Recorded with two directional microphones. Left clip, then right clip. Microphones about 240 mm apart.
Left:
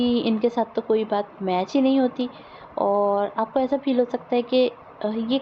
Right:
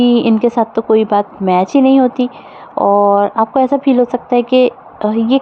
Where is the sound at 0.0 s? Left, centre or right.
Right.